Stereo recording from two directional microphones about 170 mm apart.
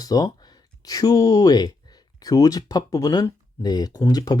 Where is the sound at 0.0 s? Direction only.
20° left (ahead or behind).